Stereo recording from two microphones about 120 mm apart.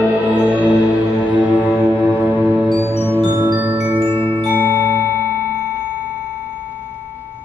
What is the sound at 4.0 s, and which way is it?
Glockenspiel, 50° right (ahead or behind).